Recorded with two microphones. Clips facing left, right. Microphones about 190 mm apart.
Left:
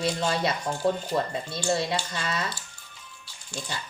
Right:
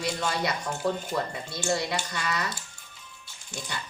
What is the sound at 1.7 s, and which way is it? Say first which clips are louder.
Speech: left 2 dB; 25° left (ahead or behind).